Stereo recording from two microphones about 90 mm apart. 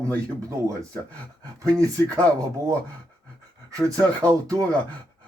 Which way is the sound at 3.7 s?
45° right (ahead or behind).